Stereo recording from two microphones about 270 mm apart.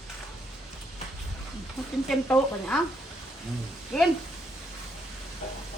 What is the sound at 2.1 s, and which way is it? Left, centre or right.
Speech, centre.